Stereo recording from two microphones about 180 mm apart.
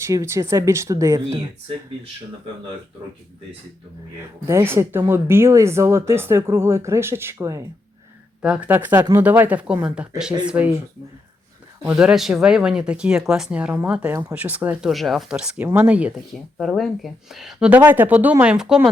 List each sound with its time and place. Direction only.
0.0 s speech: 15° right (ahead or behind)
4.2 s speech: 15° right (ahead or behind)
11.9 s speech: 5° right (ahead or behind)